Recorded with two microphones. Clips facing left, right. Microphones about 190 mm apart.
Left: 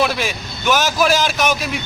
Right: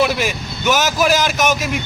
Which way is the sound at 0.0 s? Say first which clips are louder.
Right 2 dB; 10° right (ahead or behind).